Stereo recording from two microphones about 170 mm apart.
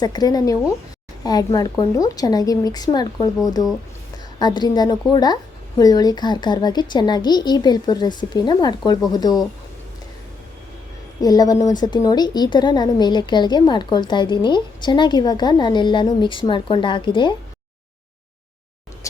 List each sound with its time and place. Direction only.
0.0 s a woman's voice: 25° left (ahead or behind)
11.2 s a woman's voice: 20° left (ahead or behind)